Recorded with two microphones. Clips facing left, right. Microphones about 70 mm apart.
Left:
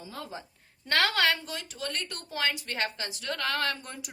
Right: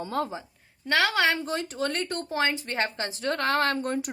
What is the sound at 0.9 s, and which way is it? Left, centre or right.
Speech, centre.